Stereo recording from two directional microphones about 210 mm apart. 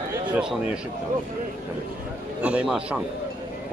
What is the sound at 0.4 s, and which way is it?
Speech, 5° right (ahead or behind).